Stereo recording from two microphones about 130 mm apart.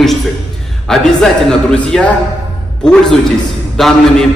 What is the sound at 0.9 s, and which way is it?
A man's voice, 5° left (ahead or behind).